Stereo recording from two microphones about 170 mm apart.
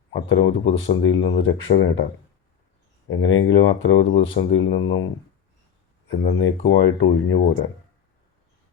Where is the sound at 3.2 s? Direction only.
90° left.